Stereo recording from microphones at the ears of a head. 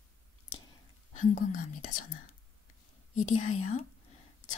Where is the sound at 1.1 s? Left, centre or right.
Left.